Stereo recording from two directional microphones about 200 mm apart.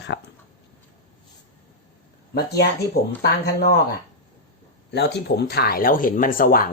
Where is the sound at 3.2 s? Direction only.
55° left (ahead or behind).